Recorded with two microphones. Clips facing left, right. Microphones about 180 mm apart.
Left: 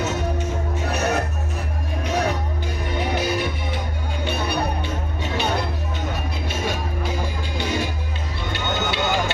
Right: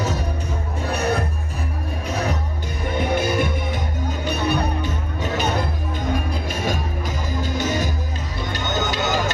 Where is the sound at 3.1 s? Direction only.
50° right (ahead or behind).